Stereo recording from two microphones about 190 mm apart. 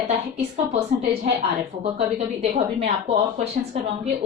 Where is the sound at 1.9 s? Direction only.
30° right (ahead or behind).